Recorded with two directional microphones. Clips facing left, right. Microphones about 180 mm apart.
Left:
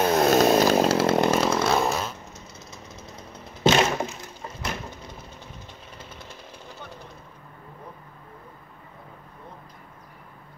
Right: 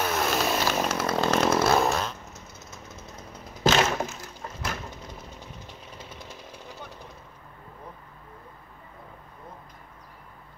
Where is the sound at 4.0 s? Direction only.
5° right (ahead or behind).